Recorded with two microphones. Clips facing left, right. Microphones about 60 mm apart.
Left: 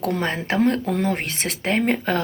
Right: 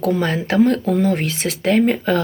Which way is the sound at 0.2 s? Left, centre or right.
Left.